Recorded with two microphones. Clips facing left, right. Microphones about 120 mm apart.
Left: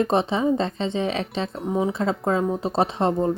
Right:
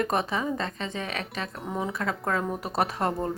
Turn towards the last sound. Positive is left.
turn(degrees=25)  # may be behind; listen again after turning